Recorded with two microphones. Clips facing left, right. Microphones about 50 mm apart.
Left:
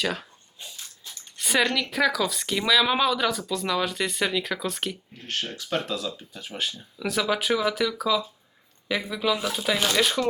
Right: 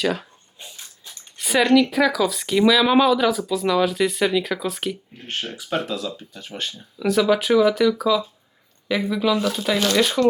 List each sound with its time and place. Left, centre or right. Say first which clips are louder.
0.0 s speech: right 5 dB; centre
1.4 s speech: right 7 dB; centre
5.1 s speech: right 2 dB; centre